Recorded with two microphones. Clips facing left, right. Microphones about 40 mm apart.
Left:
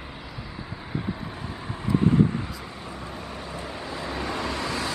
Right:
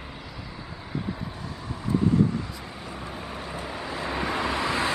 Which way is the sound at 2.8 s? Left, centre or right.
Centre.